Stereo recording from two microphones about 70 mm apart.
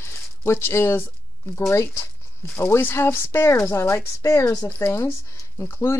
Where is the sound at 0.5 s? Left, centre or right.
Left.